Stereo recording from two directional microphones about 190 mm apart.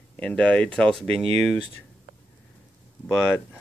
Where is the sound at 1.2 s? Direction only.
30° right (ahead or behind).